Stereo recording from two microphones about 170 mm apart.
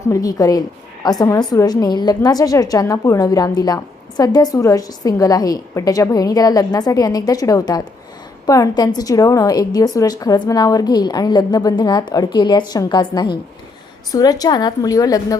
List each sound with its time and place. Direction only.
0.1 s a woman's voice: 20° left (ahead or behind)